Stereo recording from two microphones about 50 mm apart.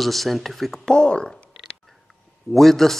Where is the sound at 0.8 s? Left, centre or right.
Centre.